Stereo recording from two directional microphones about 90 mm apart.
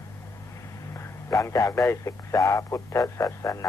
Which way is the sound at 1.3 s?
35° left (ahead or behind).